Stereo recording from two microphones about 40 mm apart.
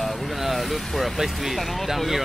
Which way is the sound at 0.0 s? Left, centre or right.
Centre.